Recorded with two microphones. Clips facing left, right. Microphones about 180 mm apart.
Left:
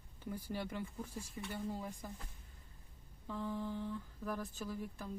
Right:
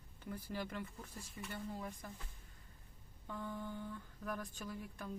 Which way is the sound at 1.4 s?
20° left (ahead or behind).